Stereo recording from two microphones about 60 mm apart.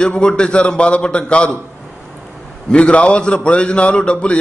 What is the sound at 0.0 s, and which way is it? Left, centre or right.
A man's voice, centre.